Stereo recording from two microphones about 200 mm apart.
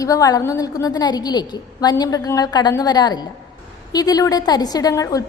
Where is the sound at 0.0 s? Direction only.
15° left (ahead or behind).